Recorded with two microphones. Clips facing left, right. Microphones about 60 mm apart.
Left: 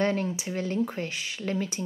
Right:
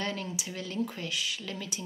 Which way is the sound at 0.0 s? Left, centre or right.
Left.